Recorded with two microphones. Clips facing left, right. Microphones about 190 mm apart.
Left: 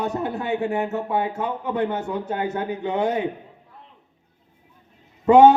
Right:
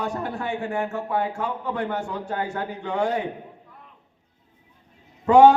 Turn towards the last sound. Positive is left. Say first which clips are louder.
# left 1 dB
turn(degrees=20)  # may be behind; listen again after turning